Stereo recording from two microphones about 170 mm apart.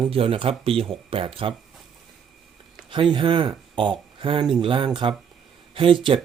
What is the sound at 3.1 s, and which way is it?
Speech, 30° right (ahead or behind).